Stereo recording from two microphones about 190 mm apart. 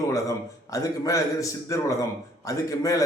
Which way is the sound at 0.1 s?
15° left (ahead or behind).